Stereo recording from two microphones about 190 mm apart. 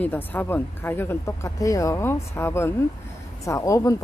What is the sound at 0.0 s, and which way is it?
Speech, 10° left (ahead or behind).